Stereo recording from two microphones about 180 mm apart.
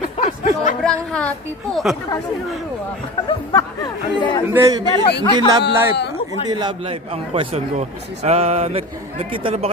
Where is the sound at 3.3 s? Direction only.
25° left (ahead or behind).